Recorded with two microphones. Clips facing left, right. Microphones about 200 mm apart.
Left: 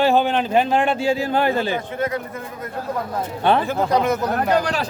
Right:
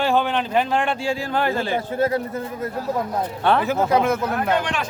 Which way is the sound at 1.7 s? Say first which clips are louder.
Right 2 dB; 30° right (ahead or behind).